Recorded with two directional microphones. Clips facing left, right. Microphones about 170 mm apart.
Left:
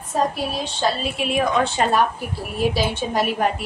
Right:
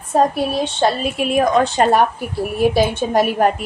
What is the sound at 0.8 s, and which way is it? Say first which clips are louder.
A woman's voice: right 3 dB; 50° right (ahead or behind).